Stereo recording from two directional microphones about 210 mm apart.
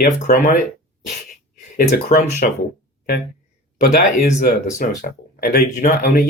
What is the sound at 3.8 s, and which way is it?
Speech, 45° left (ahead or behind).